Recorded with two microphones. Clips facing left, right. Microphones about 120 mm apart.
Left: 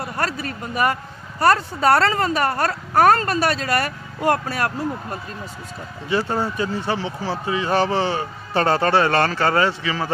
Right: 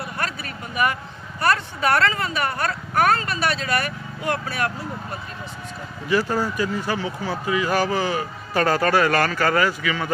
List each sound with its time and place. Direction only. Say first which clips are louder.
0.0 s a sound: left 4 dB; 40° left (ahead or behind)
1.4 s speech: left 4 dB; 35° left (ahead or behind)
6.0 s speech: even; 25° left (ahead or behind)